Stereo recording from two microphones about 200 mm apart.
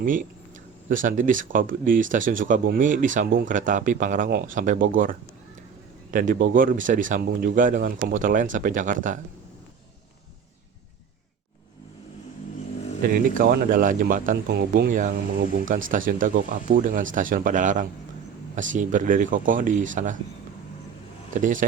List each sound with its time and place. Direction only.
0.0 s speech: 40° right (ahead or behind)
6.1 s speech: 40° right (ahead or behind)
13.0 s speech: 45° right (ahead or behind)